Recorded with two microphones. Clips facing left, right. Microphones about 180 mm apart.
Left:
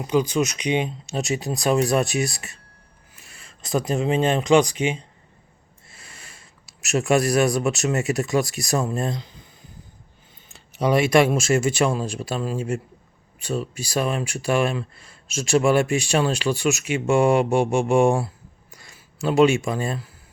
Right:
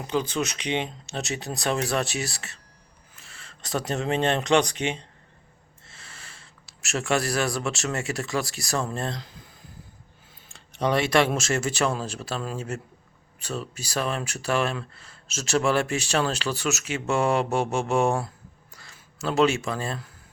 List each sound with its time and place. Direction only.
0.0 s speech: 15° left (ahead or behind)
5.9 s a sound: 10° left (ahead or behind)
6.9 s speech: 20° left (ahead or behind)
9.1 s speech: centre (ahead or behind)
10.5 s speech: 5° left (ahead or behind)